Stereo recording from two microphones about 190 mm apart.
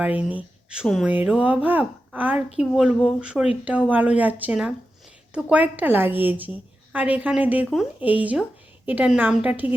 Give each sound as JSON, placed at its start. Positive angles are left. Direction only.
{"t": 0.0, "sound": "a woman's voice", "side_deg": -10}